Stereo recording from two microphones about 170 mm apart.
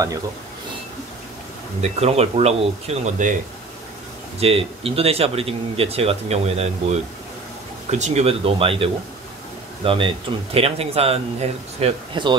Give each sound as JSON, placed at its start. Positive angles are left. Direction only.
{"t": 1.8, "sound": "speech", "side_deg": -40}
{"t": 4.4, "sound": "speech", "side_deg": -35}